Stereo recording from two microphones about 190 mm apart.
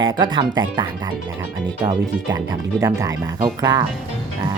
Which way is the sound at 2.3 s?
15° right (ahead or behind).